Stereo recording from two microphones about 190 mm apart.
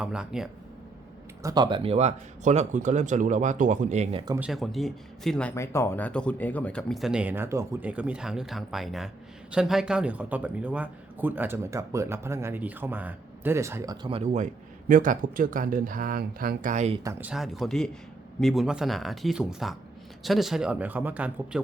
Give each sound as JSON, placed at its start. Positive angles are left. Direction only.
{"t": 0.0, "sound": "speech", "side_deg": -5}
{"t": 1.4, "sound": "speech", "side_deg": -20}
{"t": 4.4, "sound": "speech", "side_deg": -5}
{"t": 17.0, "sound": "speech", "side_deg": -15}